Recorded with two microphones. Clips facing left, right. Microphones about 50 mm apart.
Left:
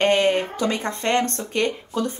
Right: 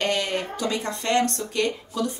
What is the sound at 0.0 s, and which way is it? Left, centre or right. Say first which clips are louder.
A woman's voice: left 7 dB; left.